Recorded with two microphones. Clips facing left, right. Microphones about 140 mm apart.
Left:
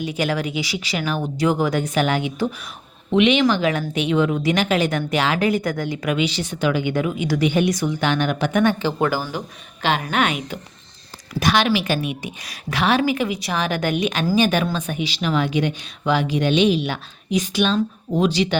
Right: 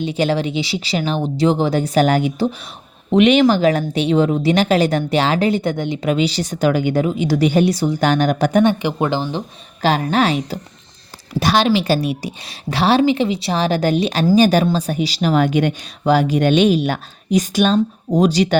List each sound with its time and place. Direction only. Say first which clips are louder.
0.0 s speech: right 4 dB; 30° right (ahead or behind)
8.6 s speech: right 2 dB; 20° right (ahead or behind)
9.8 s speech: right 4 dB; 35° right (ahead or behind)